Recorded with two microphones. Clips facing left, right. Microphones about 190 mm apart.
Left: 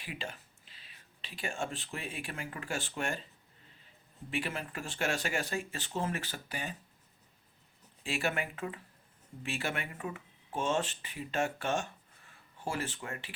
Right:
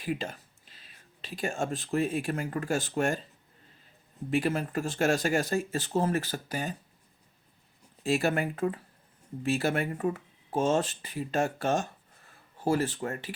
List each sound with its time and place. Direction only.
0.0 s speech: 40° right (ahead or behind)
4.3 s speech: 40° right (ahead or behind)
8.0 s speech: 40° right (ahead or behind)